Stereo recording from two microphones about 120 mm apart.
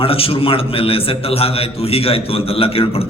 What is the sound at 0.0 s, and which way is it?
A man's voice, 50° left (ahead or behind).